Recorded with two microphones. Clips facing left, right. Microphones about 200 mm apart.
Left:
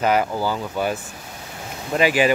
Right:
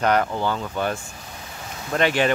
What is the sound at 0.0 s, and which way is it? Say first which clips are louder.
Speech: left 1 dB; 5° left (ahead or behind).